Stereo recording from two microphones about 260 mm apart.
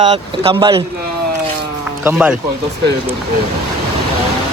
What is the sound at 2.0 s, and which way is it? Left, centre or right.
Speech, centre.